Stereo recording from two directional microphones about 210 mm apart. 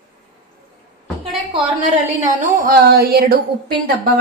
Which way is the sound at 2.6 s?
45° right (ahead or behind).